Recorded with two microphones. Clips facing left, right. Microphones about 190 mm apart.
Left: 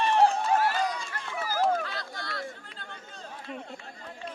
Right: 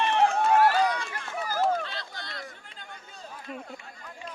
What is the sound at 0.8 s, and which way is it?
Run, 65° right (ahead or behind).